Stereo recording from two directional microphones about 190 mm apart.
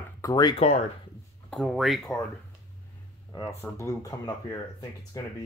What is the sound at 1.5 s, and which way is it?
Speech, centre (ahead or behind).